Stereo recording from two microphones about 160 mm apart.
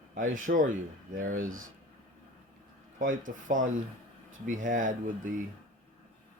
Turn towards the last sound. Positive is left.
turn(degrees=-55)  # may be behind; listen again after turning